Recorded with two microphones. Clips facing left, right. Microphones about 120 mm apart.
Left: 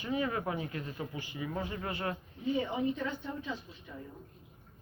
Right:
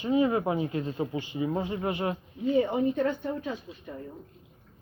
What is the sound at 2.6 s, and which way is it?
Speech, 55° right (ahead or behind).